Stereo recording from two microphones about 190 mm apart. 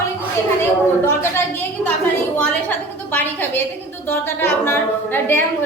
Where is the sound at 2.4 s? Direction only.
10° left (ahead or behind).